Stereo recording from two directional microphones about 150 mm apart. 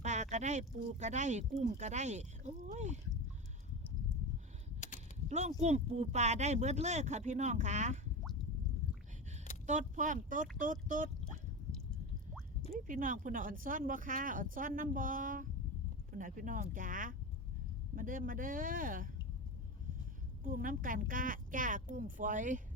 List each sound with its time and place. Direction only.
0.0 s speech: 50° right (ahead or behind)
5.3 s speech: 50° right (ahead or behind)
9.6 s speech: 55° right (ahead or behind)
11.3 s a sound: 5° left (ahead or behind)
12.9 s speech: 65° right (ahead or behind)
20.4 s speech: 65° right (ahead or behind)